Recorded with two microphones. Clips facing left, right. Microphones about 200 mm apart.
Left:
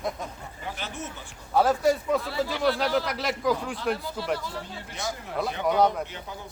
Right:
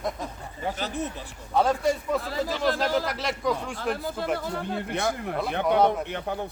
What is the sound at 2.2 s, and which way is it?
Speech, 40° right (ahead or behind).